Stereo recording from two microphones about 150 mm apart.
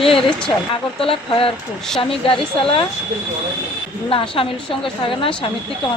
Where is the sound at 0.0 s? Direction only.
35° left (ahead or behind).